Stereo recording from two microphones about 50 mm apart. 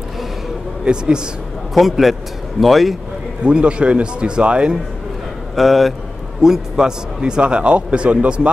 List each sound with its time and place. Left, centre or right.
0.8 s a man's voice: centre
1.7 s a man's voice: centre
3.4 s a man's voice: right
5.6 s a man's voice: centre
6.4 s a man's voice: centre